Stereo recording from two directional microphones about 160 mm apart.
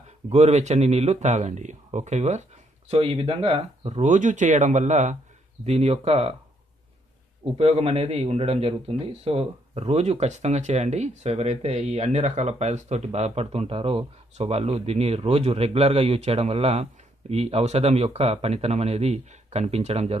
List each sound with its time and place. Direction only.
0.3 s speech: 45° right (ahead or behind)
2.9 s a man's voice: 35° right (ahead or behind)
7.5 s a man's voice: 40° right (ahead or behind)